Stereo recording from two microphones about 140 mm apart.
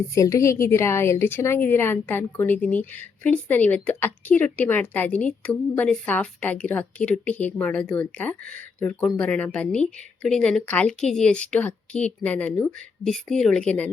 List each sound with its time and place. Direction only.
0.1 s a woman's voice: 20° left (ahead or behind)